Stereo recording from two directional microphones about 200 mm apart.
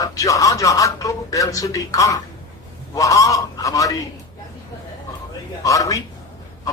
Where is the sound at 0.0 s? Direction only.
15° left (ahead or behind).